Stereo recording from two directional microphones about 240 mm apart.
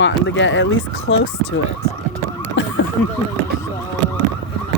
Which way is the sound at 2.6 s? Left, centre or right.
Left.